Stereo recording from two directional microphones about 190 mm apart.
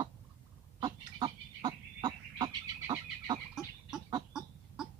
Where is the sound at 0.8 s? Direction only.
20° right (ahead or behind).